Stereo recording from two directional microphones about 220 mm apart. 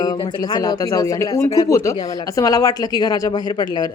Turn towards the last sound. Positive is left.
turn(degrees=20)  # may be behind; listen again after turning